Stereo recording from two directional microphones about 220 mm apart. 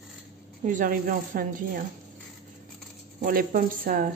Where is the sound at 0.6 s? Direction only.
35° right (ahead or behind).